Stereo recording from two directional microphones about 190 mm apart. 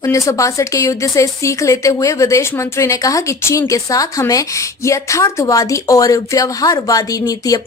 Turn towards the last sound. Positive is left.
turn(degrees=20)  # may be behind; listen again after turning